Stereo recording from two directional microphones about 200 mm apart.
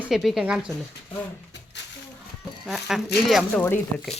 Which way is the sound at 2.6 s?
Centre (ahead or behind).